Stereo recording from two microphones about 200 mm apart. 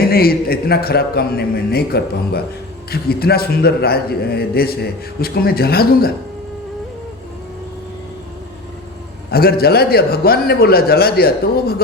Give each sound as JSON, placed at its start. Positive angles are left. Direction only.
{"t": 0.1, "sound": "a man's voice", "side_deg": 50}
{"t": 9.3, "sound": "a man's voice", "side_deg": 50}